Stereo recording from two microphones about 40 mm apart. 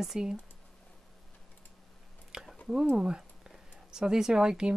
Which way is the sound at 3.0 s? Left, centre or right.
Centre.